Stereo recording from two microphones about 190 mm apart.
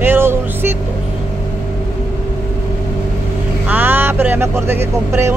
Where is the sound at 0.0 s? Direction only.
10° right (ahead or behind).